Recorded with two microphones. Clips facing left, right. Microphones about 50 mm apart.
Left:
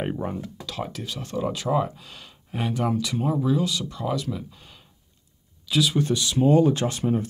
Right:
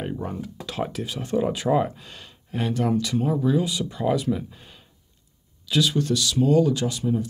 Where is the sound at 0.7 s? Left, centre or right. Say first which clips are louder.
Right 4 dB; centre.